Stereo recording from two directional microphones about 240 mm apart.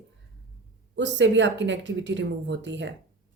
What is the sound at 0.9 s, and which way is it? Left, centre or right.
Speech, right.